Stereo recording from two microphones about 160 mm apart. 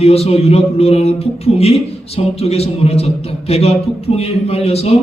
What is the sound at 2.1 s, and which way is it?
A man's voice, 40° left (ahead or behind).